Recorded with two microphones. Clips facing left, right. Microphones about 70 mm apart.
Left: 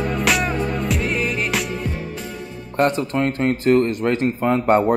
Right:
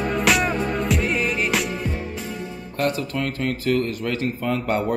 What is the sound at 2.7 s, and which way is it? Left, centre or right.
A man's voice, left.